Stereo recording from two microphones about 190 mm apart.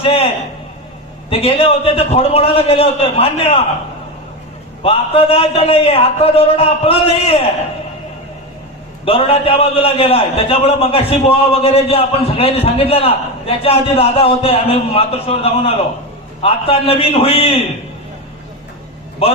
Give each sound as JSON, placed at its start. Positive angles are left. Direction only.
{"t": 0.0, "sound": "a sound", "side_deg": 30}
{"t": 1.3, "sound": "a man's voice", "side_deg": 30}
{"t": 4.8, "sound": "a man's voice", "side_deg": 30}
{"t": 9.0, "sound": "a man's voice", "side_deg": 30}